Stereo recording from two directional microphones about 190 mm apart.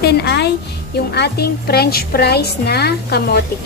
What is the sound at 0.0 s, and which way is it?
A woman's voice, 60° left (ahead or behind).